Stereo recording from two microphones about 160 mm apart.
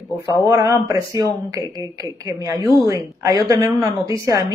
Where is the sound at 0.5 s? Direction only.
20° right (ahead or behind).